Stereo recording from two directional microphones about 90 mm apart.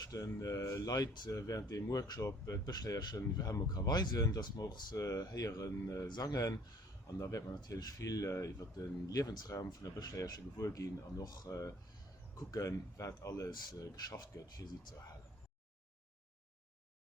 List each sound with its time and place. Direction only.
0.0 s speech: 40° left (ahead or behind)
7.2 s speech: 40° left (ahead or behind)